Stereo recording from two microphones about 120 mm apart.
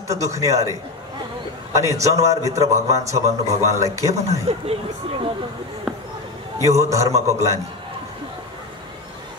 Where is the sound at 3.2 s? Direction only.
70° right (ahead or behind).